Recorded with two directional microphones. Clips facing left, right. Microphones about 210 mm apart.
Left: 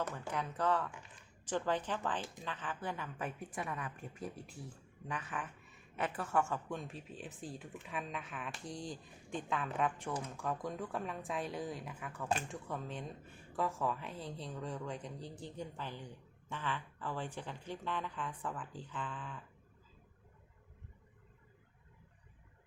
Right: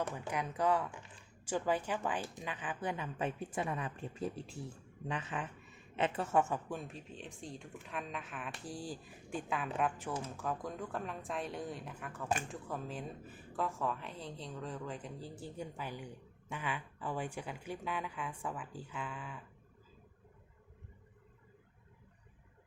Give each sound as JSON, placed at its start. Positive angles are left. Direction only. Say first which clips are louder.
{"t": 0.1, "sound": "a woman's voice", "louder": "right 1 dB", "side_deg": -10}
{"t": 6.7, "sound": "speech", "louder": "even", "side_deg": -5}